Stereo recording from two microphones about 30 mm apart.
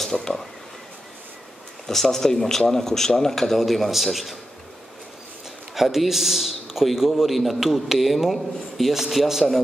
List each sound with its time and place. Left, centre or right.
0.0 s speech: centre
1.9 s speech: centre
5.8 s a man's voice: centre